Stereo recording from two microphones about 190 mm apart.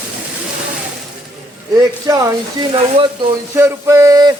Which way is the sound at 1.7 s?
15° right (ahead or behind).